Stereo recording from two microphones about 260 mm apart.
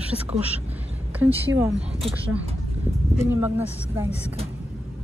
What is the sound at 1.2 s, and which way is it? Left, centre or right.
Speech, centre.